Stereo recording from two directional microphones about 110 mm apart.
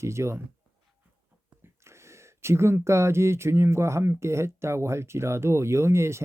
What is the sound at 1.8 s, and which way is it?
Speech, 25° right (ahead or behind).